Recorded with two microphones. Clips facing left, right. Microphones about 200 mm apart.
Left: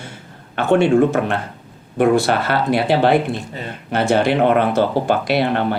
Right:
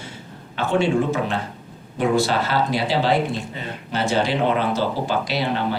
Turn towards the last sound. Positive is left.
turn(degrees=60)  # may be behind; listen again after turning